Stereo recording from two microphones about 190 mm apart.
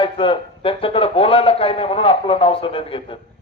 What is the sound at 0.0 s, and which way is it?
A man's voice, 30° left (ahead or behind).